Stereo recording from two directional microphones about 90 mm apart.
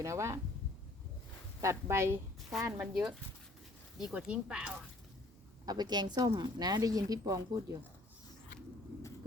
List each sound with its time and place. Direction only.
0.0 s speech: 35° right (ahead or behind)
1.6 s speech: 30° right (ahead or behind)
2.7 s speech: 10° right (ahead or behind)
5.6 s speech: 50° right (ahead or behind)